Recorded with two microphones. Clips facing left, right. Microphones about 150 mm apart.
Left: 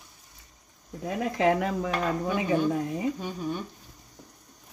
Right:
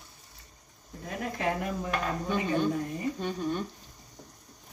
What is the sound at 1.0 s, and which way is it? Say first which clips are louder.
Speech: left 7 dB; 90° left.